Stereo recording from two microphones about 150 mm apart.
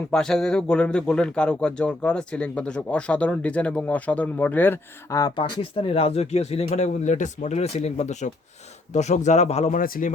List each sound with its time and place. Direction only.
0.1 s speech: 5° left (ahead or behind)
5.2 s speech: 35° left (ahead or behind)
9.7 s speech: 70° left (ahead or behind)